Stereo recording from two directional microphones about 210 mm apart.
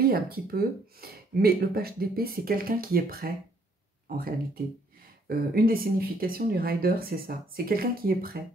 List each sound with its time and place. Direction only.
0.0 s speech: 45° right (ahead or behind)
5.3 s speech: 45° right (ahead or behind)